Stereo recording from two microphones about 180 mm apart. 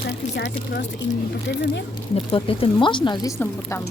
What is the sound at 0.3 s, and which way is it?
Speech, 70° left (ahead or behind).